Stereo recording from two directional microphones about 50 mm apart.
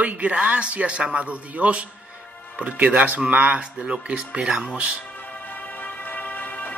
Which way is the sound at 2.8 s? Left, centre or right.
Right.